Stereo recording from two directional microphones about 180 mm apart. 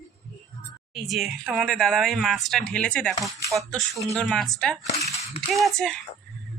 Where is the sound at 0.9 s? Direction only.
Centre (ahead or behind).